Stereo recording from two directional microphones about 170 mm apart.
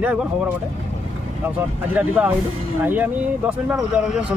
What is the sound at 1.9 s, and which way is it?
A man's voice, 10° right (ahead or behind).